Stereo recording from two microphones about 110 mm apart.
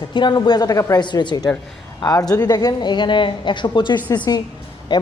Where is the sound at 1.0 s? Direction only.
45° left (ahead or behind).